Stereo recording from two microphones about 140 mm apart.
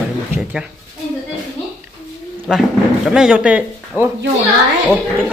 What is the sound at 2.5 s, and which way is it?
Speech, 5° right (ahead or behind).